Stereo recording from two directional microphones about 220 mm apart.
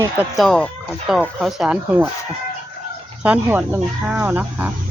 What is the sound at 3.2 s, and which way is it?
Speech, 5° right (ahead or behind).